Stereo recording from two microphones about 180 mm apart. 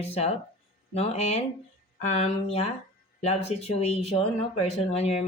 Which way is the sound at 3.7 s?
35° left (ahead or behind).